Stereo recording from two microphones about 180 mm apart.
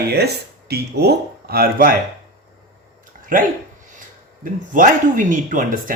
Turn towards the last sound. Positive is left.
turn(degrees=-50)  # may be behind; listen again after turning